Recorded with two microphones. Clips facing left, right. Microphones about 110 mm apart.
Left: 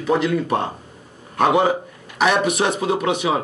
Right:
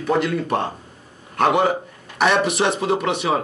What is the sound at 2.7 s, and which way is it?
Speech, 15° left (ahead or behind).